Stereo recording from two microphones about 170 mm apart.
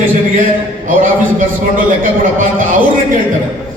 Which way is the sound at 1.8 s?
50° right (ahead or behind).